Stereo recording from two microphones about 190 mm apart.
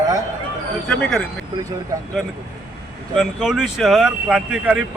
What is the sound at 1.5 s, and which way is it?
Speech, 20° right (ahead or behind).